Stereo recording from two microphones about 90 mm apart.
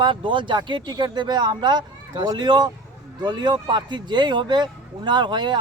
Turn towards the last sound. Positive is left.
turn(degrees=-55)  # may be behind; listen again after turning